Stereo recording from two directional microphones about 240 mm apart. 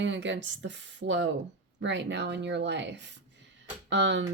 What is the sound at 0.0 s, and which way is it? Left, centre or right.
Speech, right.